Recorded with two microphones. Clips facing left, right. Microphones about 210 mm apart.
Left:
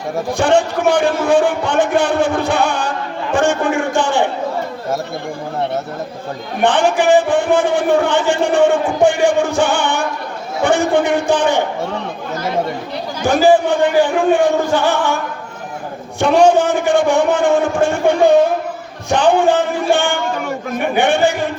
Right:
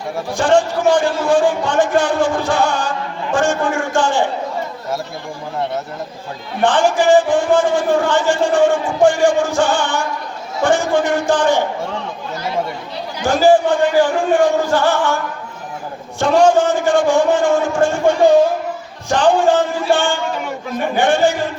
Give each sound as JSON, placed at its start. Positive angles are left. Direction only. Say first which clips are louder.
{"t": 0.3, "sound": "a man's voice", "louder": "even", "side_deg": 60}
{"t": 6.6, "sound": "a man's voice", "louder": "even", "side_deg": 60}
{"t": 13.2, "sound": "a man's voice", "louder": "even", "side_deg": 60}
{"t": 16.2, "sound": "a man's voice", "louder": "left 1 dB", "side_deg": 60}